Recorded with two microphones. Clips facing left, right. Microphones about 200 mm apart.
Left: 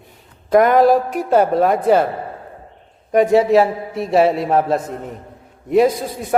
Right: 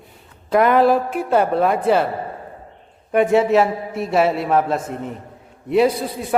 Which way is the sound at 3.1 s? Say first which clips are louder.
Left 2 dB; 35° left (ahead or behind).